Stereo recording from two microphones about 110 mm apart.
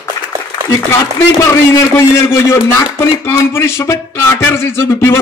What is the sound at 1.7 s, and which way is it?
A man's voice, 25° left (ahead or behind).